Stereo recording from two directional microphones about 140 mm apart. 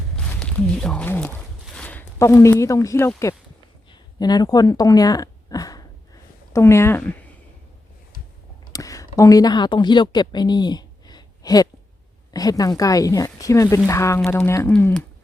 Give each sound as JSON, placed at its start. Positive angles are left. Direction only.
{"t": 0.3, "sound": "speech", "side_deg": 5}
{"t": 1.6, "sound": "a sound", "side_deg": 5}
{"t": 2.1, "sound": "speech", "side_deg": 20}
{"t": 4.2, "sound": "speech", "side_deg": 30}
{"t": 8.7, "sound": "speech", "side_deg": 25}